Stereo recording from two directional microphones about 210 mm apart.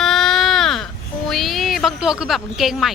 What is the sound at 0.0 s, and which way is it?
Baby cry, centre (ahead or behind).